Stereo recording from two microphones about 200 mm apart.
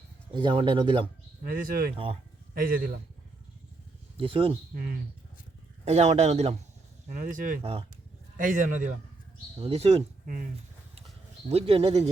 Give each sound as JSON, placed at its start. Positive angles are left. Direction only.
{"t": 0.3, "sound": "speech", "side_deg": -25}
{"t": 1.5, "sound": "speech", "side_deg": -45}
{"t": 4.2, "sound": "speech", "side_deg": -30}
{"t": 5.8, "sound": "speech", "side_deg": -35}
{"t": 7.1, "sound": "speech", "side_deg": -45}
{"t": 7.6, "sound": "speech", "side_deg": -30}
{"t": 8.4, "sound": "speech", "side_deg": -40}
{"t": 9.6, "sound": "speech", "side_deg": -30}
{"t": 11.4, "sound": "speech", "side_deg": -30}